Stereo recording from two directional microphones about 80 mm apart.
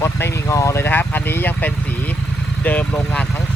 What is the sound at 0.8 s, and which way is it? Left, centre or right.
Speech, left.